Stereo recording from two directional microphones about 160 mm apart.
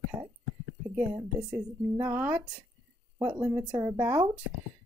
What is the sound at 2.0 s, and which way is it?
Speech, 10° right (ahead or behind).